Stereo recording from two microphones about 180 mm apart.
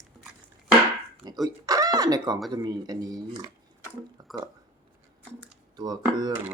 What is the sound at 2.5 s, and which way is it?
Speech, 25° right (ahead or behind).